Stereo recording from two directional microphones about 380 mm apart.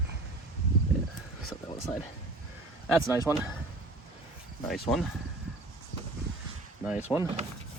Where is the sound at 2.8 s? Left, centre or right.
Centre.